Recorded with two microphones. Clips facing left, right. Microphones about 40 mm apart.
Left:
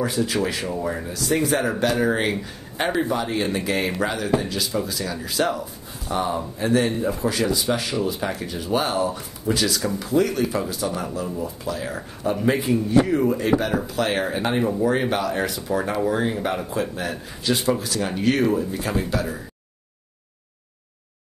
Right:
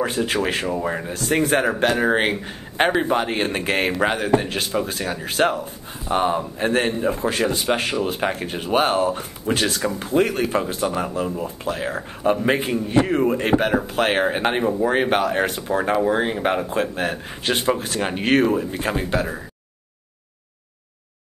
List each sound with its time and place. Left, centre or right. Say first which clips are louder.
0.0 s speech: right 1 dB; right
14.6 s speech: right 1 dB; centre
14.9 s speech: right 3 dB; right
18.4 s speech: right 1 dB; right
18.7 s speech: right 2 dB; right